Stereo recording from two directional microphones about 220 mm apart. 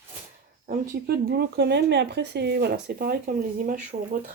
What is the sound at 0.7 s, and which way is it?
Speech, 45° right (ahead or behind).